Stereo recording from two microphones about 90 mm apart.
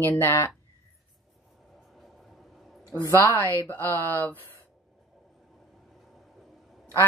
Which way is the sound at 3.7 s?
20° left (ahead or behind).